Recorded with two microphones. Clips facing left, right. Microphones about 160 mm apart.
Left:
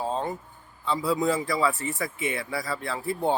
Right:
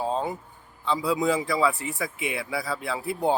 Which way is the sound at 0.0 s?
5° right (ahead or behind).